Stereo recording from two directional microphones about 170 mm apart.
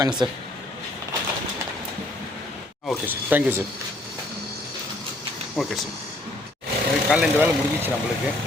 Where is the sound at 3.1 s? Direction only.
10° right (ahead or behind).